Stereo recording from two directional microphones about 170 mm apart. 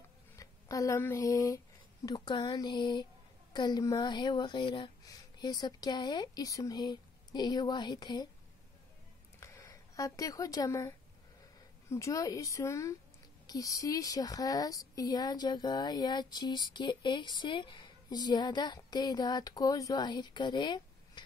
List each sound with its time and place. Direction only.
0.4 s speech: 20° left (ahead or behind)
9.4 s speech: 20° left (ahead or behind)